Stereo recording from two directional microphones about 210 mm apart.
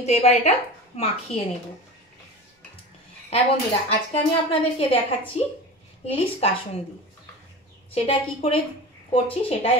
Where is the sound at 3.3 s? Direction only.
30° left (ahead or behind).